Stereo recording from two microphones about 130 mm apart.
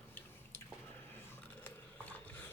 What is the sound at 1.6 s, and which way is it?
Ratchet, 15° left (ahead or behind).